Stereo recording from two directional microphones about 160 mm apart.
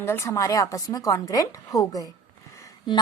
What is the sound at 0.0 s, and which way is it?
A woman's voice, 15° left (ahead or behind).